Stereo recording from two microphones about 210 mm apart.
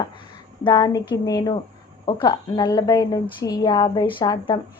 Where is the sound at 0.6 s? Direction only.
20° left (ahead or behind).